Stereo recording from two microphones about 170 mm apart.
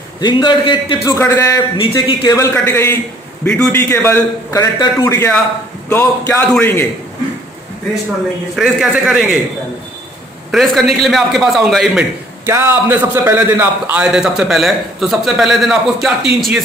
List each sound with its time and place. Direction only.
0.2 s a man's voice: 25° left (ahead or behind)
1.0 s a man's voice: 15° left (ahead or behind)
1.8 s a man's voice: 30° left (ahead or behind)
2.3 s a man's voice: 15° left (ahead or behind)
8.5 s a man's voice: centre (ahead or behind)
10.5 s a man's voice: centre (ahead or behind)
12.4 s a man's voice: 15° right (ahead or behind)